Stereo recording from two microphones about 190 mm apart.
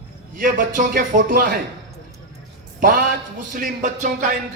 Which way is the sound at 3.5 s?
45° right (ahead or behind).